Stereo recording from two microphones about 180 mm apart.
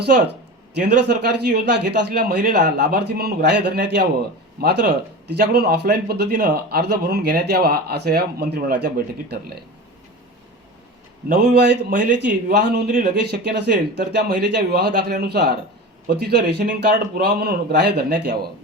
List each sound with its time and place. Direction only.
0.8 s speech: 60° right (ahead or behind)
2.6 s speech: 50° right (ahead or behind)
11.3 s a man's voice: 70° right (ahead or behind)